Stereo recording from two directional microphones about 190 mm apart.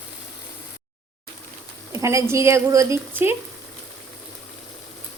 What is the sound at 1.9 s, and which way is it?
Speech, 15° right (ahead or behind).